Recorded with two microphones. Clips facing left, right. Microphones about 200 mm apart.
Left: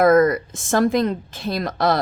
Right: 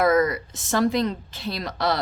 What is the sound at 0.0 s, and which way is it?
A woman's voice, 50° left (ahead or behind).